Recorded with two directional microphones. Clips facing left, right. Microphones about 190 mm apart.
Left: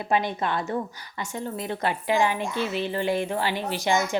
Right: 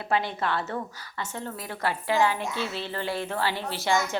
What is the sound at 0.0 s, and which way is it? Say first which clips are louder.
A woman's voice: left 2 dB; 20° left (ahead or behind).